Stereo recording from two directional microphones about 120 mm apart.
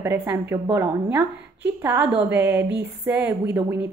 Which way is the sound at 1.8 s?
15° right (ahead or behind).